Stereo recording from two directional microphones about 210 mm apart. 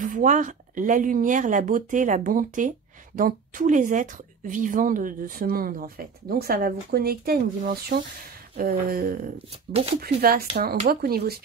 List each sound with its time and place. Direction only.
0.0 s a woman's voice: 35° right (ahead or behind)